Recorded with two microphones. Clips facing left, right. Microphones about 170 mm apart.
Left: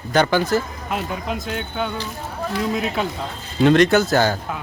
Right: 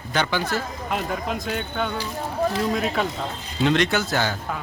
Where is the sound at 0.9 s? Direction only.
Centre (ahead or behind).